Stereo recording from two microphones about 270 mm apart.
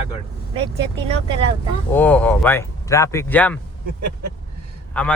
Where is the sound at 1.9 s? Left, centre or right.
Centre.